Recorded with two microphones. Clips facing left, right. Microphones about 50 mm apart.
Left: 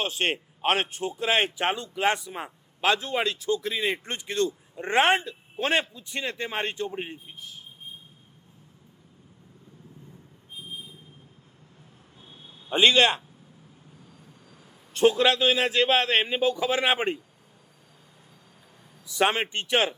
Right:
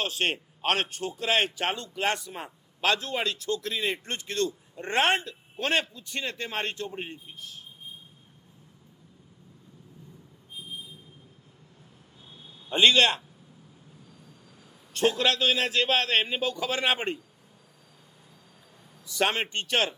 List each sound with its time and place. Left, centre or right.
0.0 s a man's voice: left
6.9 s a man's voice: centre
12.6 s a man's voice: centre
15.2 s a man's voice: centre
19.0 s a man's voice: centre